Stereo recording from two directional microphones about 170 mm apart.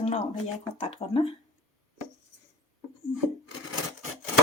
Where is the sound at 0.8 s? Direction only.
35° left (ahead or behind).